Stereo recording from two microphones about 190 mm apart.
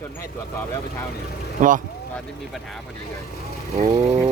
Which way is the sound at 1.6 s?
45° right (ahead or behind).